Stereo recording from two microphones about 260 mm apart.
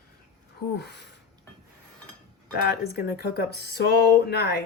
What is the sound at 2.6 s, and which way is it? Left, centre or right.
Speech, left.